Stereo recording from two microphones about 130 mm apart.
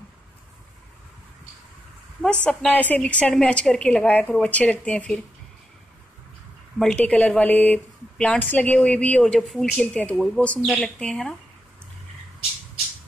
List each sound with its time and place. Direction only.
2.2 s a woman's voice: 10° left (ahead or behind)
6.8 s a woman's voice: 5° left (ahead or behind)